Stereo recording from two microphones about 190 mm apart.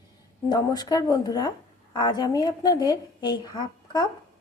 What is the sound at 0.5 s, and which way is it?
A woman's voice, 20° left (ahead or behind).